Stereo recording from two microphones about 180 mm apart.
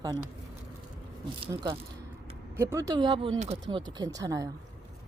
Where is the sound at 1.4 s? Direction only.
30° right (ahead or behind).